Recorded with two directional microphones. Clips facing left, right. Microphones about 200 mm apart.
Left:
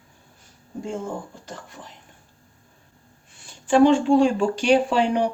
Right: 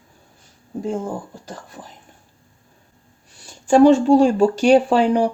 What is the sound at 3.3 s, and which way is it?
Speech, 40° right (ahead or behind).